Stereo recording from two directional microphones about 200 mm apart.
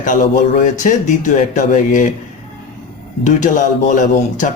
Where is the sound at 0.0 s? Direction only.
40° left (ahead or behind).